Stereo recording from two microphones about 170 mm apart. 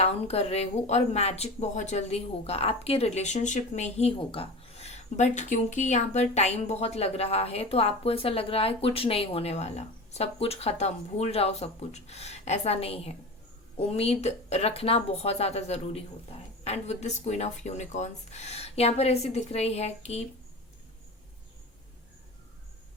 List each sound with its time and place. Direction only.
0.0 s speech: 40° left (ahead or behind)